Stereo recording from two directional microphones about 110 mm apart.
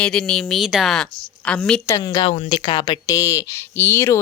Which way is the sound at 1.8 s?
30° left (ahead or behind).